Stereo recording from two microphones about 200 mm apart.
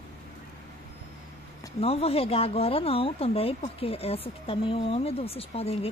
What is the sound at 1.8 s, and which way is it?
Speech, 30° left (ahead or behind).